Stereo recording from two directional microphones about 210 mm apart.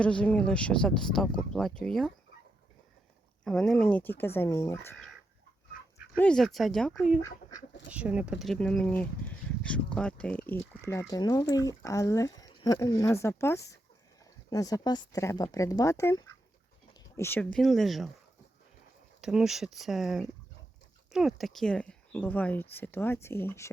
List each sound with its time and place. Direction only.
0.0 s speech: 5° left (ahead or behind)
3.4 s speech: 5° left (ahead or behind)
6.1 s speech: 5° left (ahead or behind)
7.2 s speech: 15° left (ahead or behind)
7.9 s speech: 5° right (ahead or behind)
19.2 s speech: 5° right (ahead or behind); by 23.7 s 10° left (ahead or behind)